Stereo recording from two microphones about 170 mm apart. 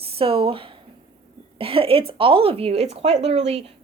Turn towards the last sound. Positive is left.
turn(degrees=-40)  # may be behind; listen again after turning